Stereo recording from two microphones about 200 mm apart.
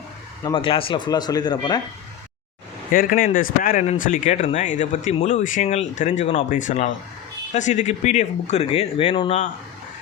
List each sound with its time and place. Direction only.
0.4 s speech: 25° left (ahead or behind)
2.9 s speech: 45° left (ahead or behind); by 9.4 s 30° left (ahead or behind)